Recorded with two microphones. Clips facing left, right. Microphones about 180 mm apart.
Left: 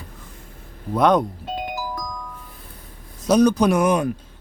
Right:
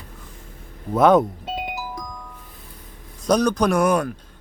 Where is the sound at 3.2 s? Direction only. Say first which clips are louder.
Left 3 dB; 5° left (ahead or behind).